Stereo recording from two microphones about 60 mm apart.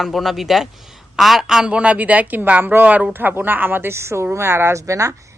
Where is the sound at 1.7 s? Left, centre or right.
Centre.